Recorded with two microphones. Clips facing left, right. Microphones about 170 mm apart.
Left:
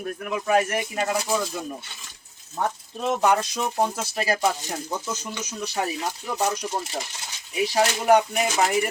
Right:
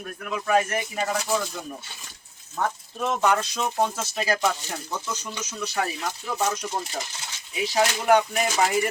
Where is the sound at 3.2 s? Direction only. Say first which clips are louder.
Left 2 dB; 15° left (ahead or behind).